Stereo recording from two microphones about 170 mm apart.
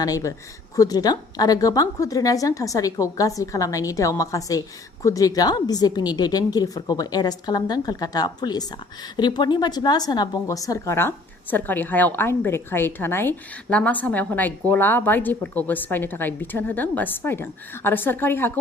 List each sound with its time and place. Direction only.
0.0 s a woman's voice: 20° left (ahead or behind)